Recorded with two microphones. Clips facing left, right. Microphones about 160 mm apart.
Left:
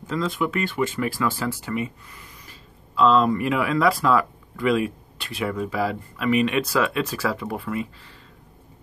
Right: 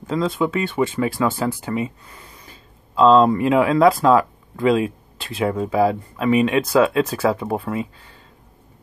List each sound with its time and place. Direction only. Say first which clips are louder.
0.1 s speech: right 4 dB; 25° right (ahead or behind)
2.9 s speech: right 5 dB; 30° right (ahead or behind)